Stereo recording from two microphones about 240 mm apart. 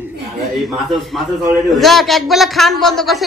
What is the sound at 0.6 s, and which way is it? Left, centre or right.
A man's voice, centre.